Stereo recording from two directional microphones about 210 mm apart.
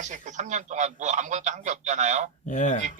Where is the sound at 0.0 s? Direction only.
35° right (ahead or behind).